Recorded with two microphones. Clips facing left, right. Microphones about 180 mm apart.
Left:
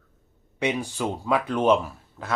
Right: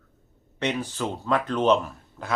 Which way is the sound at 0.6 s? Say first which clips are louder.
Left 1 dB; 10° left (ahead or behind).